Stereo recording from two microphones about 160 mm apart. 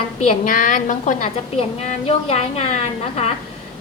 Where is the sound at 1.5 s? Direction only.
40° left (ahead or behind).